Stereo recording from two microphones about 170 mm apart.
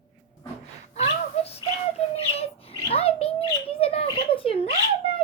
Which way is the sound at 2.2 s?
35° left (ahead or behind).